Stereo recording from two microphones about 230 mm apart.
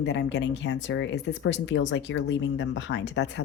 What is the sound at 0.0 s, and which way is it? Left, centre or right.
Speech, left.